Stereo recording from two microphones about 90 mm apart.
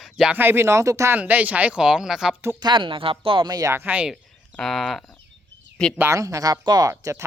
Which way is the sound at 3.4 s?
45° right (ahead or behind).